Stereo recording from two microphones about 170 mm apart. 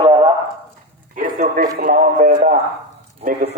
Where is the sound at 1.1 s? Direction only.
50° right (ahead or behind).